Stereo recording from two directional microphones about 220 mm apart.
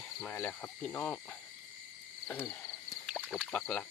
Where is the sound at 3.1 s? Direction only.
Centre (ahead or behind).